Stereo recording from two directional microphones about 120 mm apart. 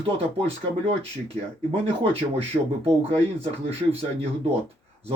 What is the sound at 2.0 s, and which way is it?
Speech, 60° right (ahead or behind).